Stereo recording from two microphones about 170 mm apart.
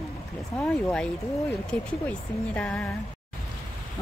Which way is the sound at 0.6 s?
10° left (ahead or behind).